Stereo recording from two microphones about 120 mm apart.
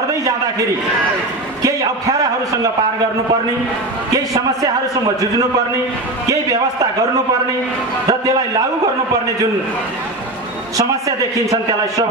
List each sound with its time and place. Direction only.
1.6 s a man's voice: 30° right (ahead or behind)
4.1 s a man's voice: 30° right (ahead or behind)
8.1 s a man's voice: 30° right (ahead or behind)
10.8 s a man's voice: 30° right (ahead or behind)